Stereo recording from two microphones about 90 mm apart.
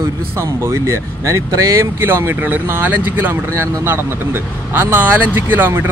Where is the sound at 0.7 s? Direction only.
30° right (ahead or behind).